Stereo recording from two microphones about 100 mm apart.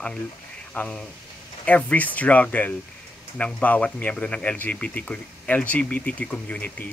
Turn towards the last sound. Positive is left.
turn(degrees=15)  # may be behind; listen again after turning